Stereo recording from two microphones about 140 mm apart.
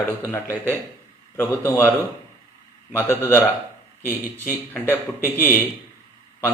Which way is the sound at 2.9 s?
20° left (ahead or behind).